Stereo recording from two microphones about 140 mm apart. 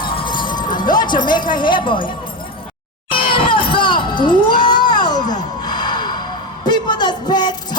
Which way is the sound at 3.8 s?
35° left (ahead or behind).